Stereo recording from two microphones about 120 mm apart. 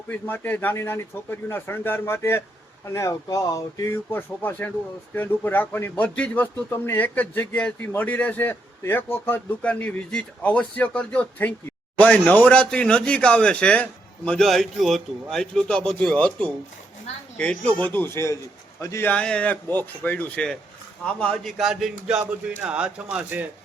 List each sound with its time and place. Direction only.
0.1 s a man's voice: 15° left (ahead or behind)
19.0 s speech: 10° left (ahead or behind); by 23.5 s 15° right (ahead or behind)